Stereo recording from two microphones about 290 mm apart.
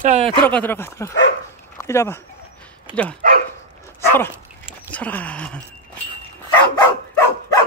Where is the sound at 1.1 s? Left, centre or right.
Left.